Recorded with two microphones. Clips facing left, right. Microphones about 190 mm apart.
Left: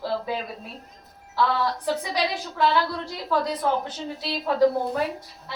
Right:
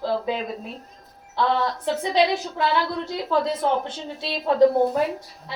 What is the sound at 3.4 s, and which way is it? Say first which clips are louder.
A woman's voice: right 2 dB; 25° right (ahead or behind).